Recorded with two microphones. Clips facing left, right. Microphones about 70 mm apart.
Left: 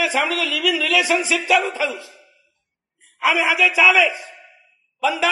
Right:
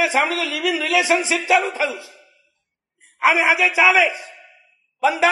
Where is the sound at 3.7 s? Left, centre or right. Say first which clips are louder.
Even; centre.